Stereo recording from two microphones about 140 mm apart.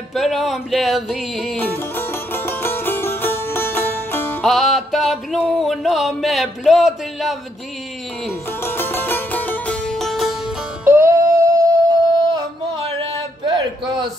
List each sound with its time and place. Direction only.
0.1 s music: centre (ahead or behind)
1.6 s music: 15° left (ahead or behind)
4.4 s music: centre (ahead or behind)
5.4 s a sound: 10° left (ahead or behind)
5.7 s a sound: centre (ahead or behind)
8.6 s music: 15° left (ahead or behind)
10.9 s music: 20° right (ahead or behind)